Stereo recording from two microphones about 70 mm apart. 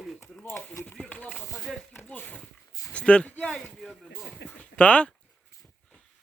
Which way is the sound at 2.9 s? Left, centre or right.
Centre.